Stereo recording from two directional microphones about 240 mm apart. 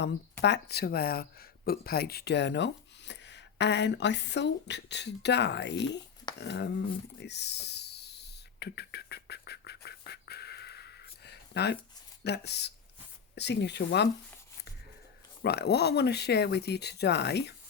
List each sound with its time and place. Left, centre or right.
0.0 s speech: left
7.2 s a sound: left
12.2 s speech: left
15.4 s speech: left